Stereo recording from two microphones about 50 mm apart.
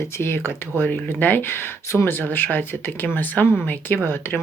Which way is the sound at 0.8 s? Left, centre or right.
Left.